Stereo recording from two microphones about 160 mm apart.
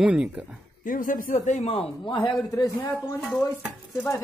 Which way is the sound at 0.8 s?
55° left (ahead or behind).